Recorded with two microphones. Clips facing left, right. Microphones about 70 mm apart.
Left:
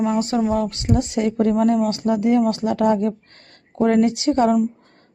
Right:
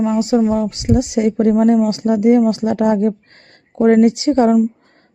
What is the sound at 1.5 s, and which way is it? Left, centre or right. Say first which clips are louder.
Speech: right 6 dB; right.